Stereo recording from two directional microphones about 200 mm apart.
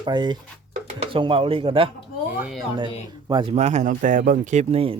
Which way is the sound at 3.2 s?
25° right (ahead or behind).